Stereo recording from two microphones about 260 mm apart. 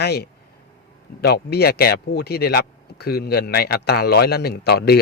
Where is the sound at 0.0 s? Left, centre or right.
Left.